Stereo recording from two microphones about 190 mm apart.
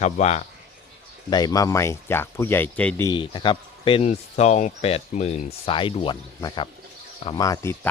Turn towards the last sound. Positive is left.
turn(degrees=15)  # may be behind; listen again after turning